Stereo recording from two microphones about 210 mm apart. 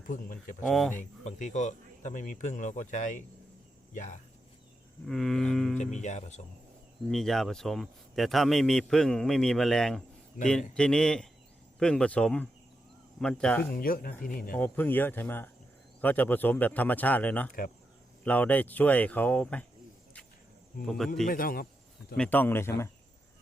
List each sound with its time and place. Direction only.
0.1 s speech: 40° left (ahead or behind)
0.6 s a man's voice: centre (ahead or behind)
0.9 s speech: 35° left (ahead or behind)
5.0 s a man's voice: centre (ahead or behind)
5.8 s speech: 35° left (ahead or behind)
7.1 s a man's voice: centre (ahead or behind)
13.7 s speech: 45° left (ahead or behind)
14.5 s a man's voice: 10° left (ahead or behind)
20.8 s a man's voice: centre (ahead or behind)
21.2 s speech: 45° left (ahead or behind)
22.2 s a man's voice: 10° left (ahead or behind)